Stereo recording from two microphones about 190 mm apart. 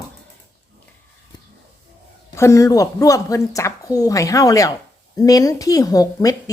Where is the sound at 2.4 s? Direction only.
15° left (ahead or behind).